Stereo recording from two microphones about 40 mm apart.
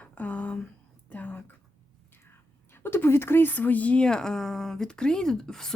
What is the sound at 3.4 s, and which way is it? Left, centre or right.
Speech, left.